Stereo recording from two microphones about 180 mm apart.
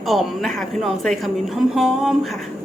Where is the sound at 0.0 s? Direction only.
Centre (ahead or behind).